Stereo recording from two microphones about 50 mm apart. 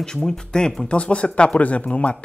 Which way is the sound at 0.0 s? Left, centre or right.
Centre.